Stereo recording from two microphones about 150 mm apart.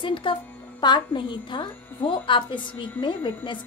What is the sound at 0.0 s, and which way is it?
A woman's voice, 35° left (ahead or behind).